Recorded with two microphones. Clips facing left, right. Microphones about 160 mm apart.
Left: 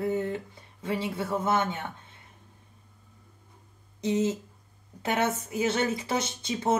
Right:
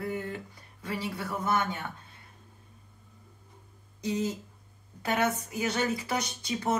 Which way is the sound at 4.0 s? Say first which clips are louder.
Left 4 dB; 25° left (ahead or behind).